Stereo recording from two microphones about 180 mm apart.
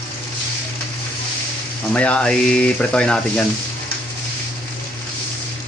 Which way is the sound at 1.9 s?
5° left (ahead or behind).